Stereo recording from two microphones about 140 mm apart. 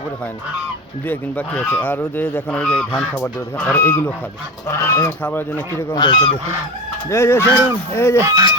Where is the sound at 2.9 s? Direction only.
5° left (ahead or behind).